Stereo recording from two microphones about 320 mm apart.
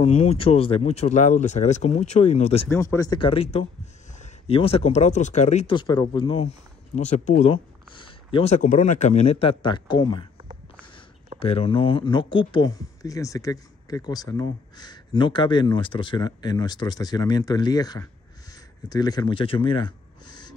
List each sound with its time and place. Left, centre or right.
0.0 s speech: centre
2.7 s speech: centre
11.3 s speech: centre